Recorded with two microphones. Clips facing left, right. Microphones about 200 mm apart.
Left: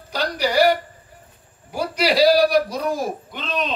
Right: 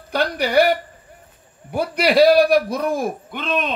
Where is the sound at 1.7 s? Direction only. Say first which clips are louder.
Right 2 dB; 55° right (ahead or behind).